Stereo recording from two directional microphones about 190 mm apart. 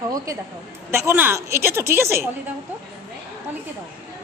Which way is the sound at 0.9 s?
15° right (ahead or behind).